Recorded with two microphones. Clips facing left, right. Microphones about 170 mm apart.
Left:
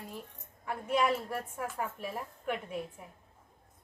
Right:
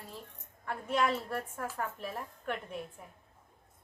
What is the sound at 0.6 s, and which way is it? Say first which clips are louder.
A woman's voice: left 1 dB; 10° left (ahead or behind).